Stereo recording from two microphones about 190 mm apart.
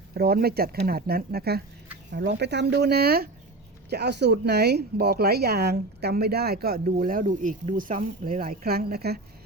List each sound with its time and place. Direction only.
0.1 s speech: 55° right (ahead or behind)